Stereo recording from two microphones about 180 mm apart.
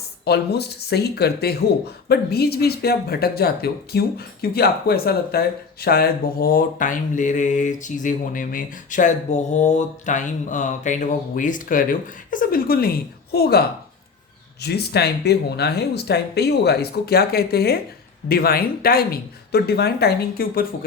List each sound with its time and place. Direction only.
0.3 s speech: 65° left (ahead or behind)
5.8 s mantra: 60° left (ahead or behind)
13.3 s speech: 60° left (ahead or behind)